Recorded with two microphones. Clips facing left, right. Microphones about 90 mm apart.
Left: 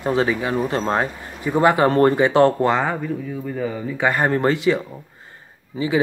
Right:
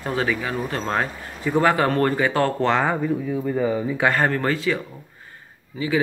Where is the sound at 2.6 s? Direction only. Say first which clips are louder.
Left 1 dB; 10° left (ahead or behind).